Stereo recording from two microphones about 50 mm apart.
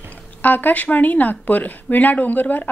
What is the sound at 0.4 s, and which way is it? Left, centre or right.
A woman's voice, left.